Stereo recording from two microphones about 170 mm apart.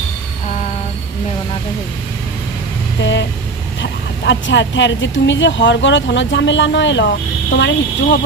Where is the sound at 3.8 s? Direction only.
90° left.